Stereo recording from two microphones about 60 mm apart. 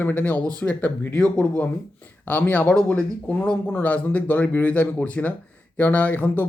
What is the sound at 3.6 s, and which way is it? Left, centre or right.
Speech, left.